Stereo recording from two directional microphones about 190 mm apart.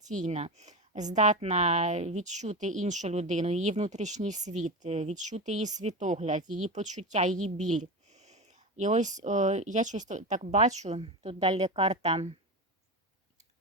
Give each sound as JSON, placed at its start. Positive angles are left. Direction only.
{"t": 0.0, "sound": "a woman's voice", "side_deg": -40}